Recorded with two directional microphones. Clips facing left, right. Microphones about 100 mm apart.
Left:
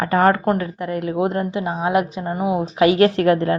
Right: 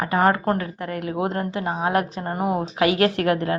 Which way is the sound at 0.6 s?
25° left (ahead or behind).